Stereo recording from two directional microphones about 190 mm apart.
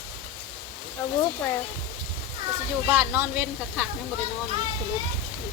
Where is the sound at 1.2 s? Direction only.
15° left (ahead or behind).